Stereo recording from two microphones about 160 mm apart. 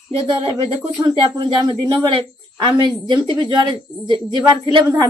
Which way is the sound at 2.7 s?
25° right (ahead or behind).